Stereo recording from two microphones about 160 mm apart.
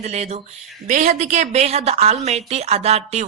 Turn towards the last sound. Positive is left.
turn(degrees=-40)  # may be behind; listen again after turning